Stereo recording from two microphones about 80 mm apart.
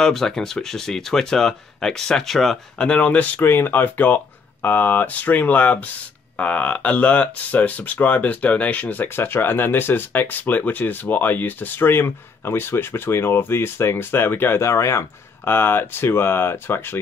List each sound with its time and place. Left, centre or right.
0.0 s speech: centre
2.8 s speech: centre